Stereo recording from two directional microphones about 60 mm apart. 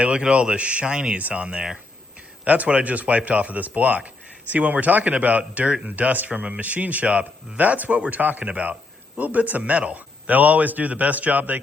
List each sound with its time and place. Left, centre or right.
0.0 s speech: centre